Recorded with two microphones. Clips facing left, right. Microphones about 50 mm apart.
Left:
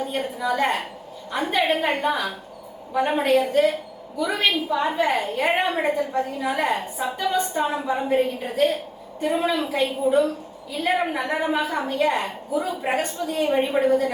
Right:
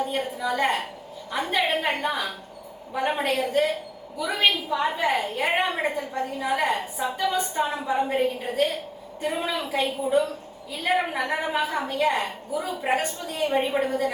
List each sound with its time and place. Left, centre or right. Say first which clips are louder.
0.5 s a woman's voice: left 1 dB; centre
4.2 s a woman's voice: left 1 dB; centre